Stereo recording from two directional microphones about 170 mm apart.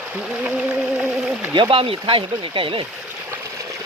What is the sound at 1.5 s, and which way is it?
Speech, 30° right (ahead or behind).